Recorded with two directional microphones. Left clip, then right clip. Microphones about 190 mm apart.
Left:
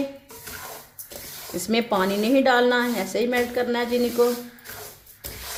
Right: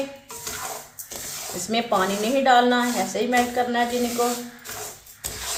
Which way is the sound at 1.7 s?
50° left (ahead or behind).